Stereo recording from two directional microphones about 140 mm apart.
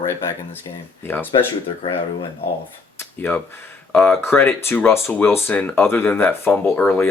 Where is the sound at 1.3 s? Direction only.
40° left (ahead or behind).